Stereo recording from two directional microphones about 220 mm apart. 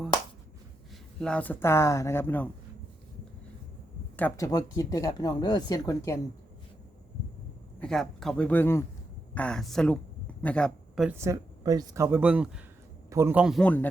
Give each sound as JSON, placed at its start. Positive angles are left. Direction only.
{"t": 1.2, "sound": "speech", "side_deg": 5}
{"t": 4.2, "sound": "speech", "side_deg": 15}
{"t": 7.8, "sound": "speech", "side_deg": 0}
{"t": 11.2, "sound": "speech", "side_deg": -15}